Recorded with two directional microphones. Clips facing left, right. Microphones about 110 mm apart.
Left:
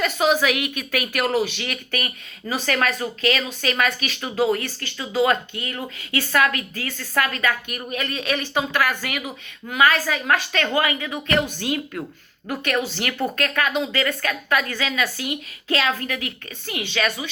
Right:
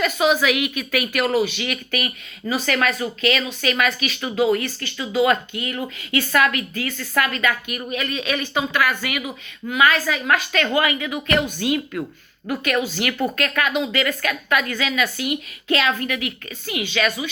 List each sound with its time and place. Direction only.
0.4 s speech: 40° left (ahead or behind)
13.3 s speech: 35° left (ahead or behind)